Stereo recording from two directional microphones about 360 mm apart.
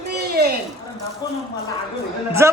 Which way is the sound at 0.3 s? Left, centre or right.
Right.